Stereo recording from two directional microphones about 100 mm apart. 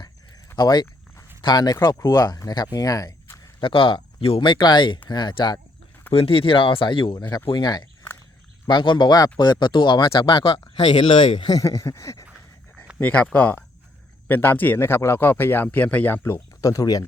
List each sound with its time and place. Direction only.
0.5 s speech: 45° left (ahead or behind)
3.6 s speech: 60° left (ahead or behind)
6.1 s speech: 70° left (ahead or behind); by 11.6 s 50° left (ahead or behind)
11.6 s a sound: 30° left (ahead or behind)
13.0 s a man's voice: 15° left (ahead or behind)
16.6 s speech: 35° left (ahead or behind)